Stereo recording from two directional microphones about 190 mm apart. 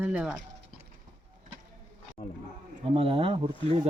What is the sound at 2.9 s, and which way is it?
Speech, 30° right (ahead or behind).